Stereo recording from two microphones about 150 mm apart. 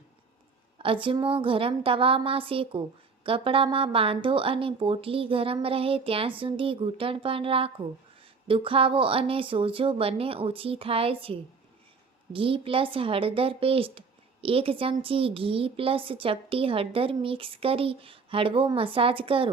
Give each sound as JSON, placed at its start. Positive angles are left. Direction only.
{"t": 0.8, "sound": "speech", "side_deg": -35}